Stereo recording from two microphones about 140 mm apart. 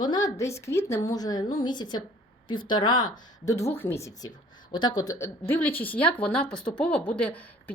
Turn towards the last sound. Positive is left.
turn(degrees=10)  # may be behind; listen again after turning